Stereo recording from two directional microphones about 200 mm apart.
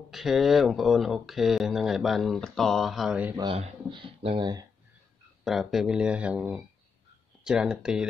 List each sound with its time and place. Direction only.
0.1 s speech: centre (ahead or behind)
3.3 s speech: 25° right (ahead or behind)
5.4 s speech: centre (ahead or behind)